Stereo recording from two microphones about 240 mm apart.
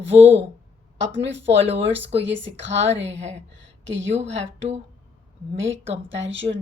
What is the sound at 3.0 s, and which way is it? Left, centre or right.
Speech, right.